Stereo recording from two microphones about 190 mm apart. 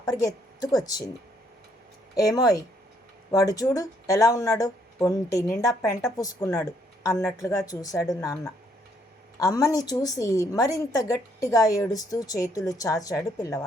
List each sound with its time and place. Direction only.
0.0 s speech: 20° left (ahead or behind)
2.1 s speech: 20° left (ahead or behind)
9.4 s speech: 20° left (ahead or behind)